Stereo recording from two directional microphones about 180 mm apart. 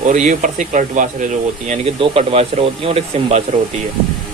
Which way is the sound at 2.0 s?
35° right (ahead or behind).